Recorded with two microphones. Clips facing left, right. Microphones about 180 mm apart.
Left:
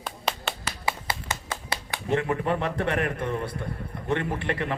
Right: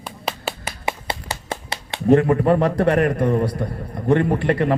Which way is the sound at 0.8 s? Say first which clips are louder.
Right 4 dB; 25° right (ahead or behind).